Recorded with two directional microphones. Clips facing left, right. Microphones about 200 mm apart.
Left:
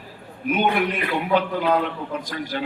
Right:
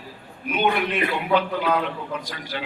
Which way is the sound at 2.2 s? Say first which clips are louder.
Left 4 dB; 45° left (ahead or behind).